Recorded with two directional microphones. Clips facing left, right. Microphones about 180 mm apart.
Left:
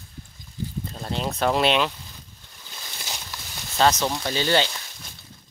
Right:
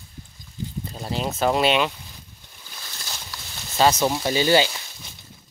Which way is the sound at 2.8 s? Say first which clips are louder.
Left 2 dB; 15° left (ahead or behind).